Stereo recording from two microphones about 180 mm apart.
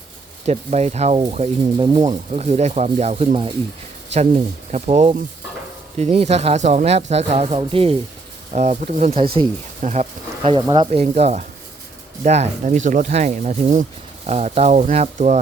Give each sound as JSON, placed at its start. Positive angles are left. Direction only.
{"t": 0.4, "sound": "speech", "side_deg": -35}
{"t": 2.3, "sound": "speech", "side_deg": -40}
{"t": 11.0, "sound": "speech", "side_deg": -40}